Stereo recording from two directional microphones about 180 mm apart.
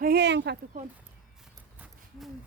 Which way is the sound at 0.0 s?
65° right (ahead or behind).